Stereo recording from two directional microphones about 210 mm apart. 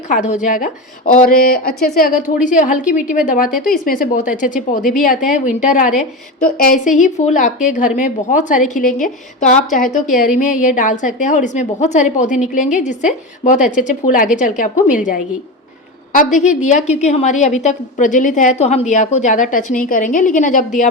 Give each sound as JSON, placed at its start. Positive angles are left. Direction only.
{"t": 0.1, "sound": "a woman's voice", "side_deg": 35}